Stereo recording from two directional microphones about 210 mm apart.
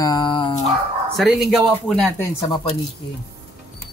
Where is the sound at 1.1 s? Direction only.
Centre (ahead or behind).